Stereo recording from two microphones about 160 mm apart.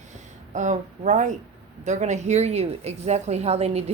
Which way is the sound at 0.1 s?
50° right (ahead or behind).